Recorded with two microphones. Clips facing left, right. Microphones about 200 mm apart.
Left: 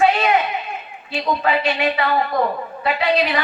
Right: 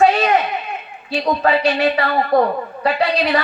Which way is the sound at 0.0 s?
40° right (ahead or behind).